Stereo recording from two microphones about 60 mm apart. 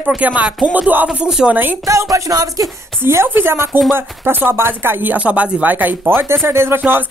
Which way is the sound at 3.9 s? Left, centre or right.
Right.